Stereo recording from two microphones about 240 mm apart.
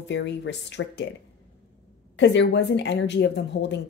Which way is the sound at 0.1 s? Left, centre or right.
Left.